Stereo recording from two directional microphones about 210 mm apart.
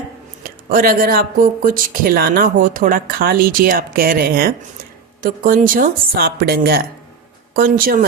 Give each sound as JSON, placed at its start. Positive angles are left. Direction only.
{"t": 0.4, "sound": "speech", "side_deg": -45}